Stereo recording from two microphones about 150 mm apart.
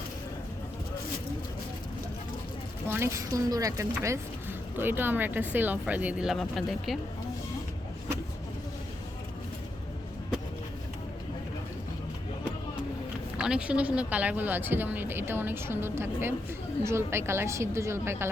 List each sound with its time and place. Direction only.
2.9 s speech: 20° right (ahead or behind); by 7.0 s centre (ahead or behind)
13.3 s speech: 5° right (ahead or behind)